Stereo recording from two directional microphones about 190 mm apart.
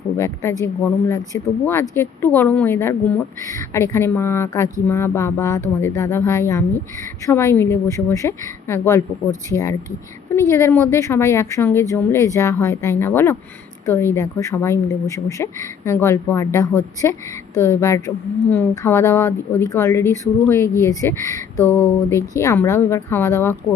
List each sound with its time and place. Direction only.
0.6 s speech: 15° left (ahead or behind)